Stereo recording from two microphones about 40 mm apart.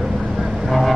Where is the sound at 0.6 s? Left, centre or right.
Centre.